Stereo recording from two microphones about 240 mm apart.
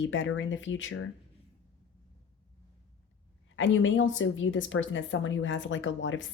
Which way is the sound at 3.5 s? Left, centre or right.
Left.